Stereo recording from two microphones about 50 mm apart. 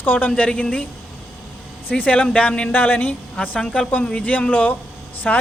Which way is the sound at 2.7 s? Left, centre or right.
Left.